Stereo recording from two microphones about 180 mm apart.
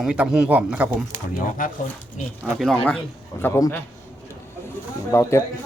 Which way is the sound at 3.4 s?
15° left (ahead or behind).